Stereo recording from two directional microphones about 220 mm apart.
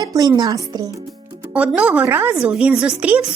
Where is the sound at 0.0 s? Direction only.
15° right (ahead or behind).